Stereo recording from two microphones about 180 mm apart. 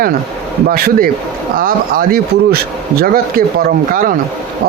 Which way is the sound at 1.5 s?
55° right (ahead or behind).